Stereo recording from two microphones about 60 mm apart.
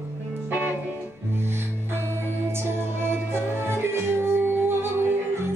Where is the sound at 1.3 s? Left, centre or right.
Right.